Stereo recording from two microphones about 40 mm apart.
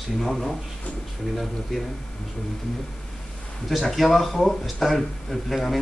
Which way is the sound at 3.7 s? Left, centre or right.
Centre.